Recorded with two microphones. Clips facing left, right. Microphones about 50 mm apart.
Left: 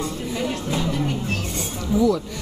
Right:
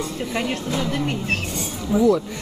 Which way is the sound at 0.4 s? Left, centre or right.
Right.